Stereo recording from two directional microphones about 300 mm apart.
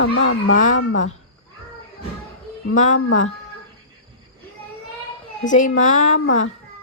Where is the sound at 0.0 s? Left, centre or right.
Left.